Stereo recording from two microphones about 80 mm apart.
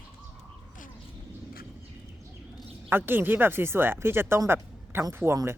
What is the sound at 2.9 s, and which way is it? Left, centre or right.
Speech, right.